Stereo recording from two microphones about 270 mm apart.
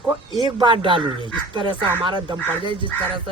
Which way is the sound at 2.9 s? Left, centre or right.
Centre.